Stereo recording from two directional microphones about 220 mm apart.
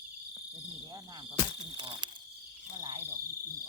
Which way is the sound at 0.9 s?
20° right (ahead or behind).